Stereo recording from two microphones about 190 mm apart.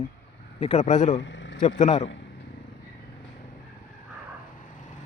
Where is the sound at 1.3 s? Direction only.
75° left (ahead or behind).